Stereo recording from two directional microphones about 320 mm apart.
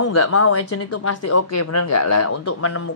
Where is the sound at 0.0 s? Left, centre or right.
Left.